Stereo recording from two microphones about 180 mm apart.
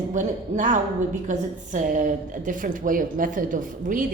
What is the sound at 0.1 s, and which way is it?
A woman's voice, 45° right (ahead or behind).